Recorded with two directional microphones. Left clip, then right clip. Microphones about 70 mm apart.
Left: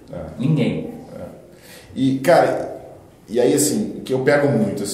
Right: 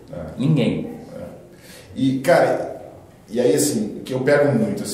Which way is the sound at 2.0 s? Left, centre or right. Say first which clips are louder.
Left 1 dB; left.